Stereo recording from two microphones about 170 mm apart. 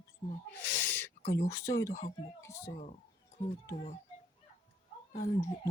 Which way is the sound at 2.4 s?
15° left (ahead or behind).